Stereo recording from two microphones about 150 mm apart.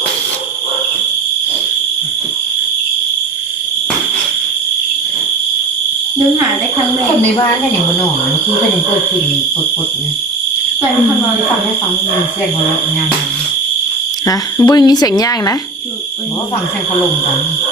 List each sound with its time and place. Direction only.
14.3 s speech: 25° left (ahead or behind)